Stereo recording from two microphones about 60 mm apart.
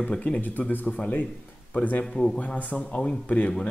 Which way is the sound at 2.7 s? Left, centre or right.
Centre.